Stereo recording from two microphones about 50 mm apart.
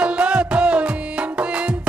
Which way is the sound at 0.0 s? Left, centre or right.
Right.